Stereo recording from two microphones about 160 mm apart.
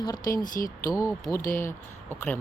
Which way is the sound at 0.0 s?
25° left (ahead or behind).